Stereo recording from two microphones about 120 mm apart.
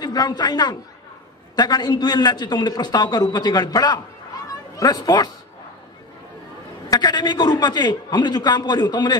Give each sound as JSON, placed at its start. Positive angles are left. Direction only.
{"t": 0.0, "sound": "a man's voice", "side_deg": 35}
{"t": 6.9, "sound": "a man's voice", "side_deg": 35}